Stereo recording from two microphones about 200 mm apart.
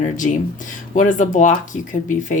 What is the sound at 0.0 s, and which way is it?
A woman's voice, 40° left (ahead or behind).